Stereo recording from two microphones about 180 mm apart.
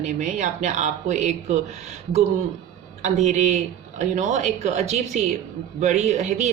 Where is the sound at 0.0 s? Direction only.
40° right (ahead or behind).